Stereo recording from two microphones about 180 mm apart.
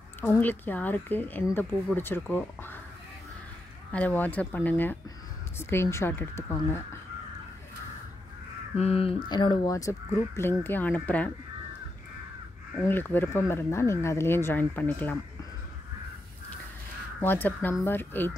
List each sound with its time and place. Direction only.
0.2 s speech: 10° left (ahead or behind)
3.9 s speech: 10° left (ahead or behind)
8.7 s speech: 35° left (ahead or behind); by 11.3 s 10° left (ahead or behind)
12.8 s speech: 10° left (ahead or behind)
17.2 s speech: 10° left (ahead or behind)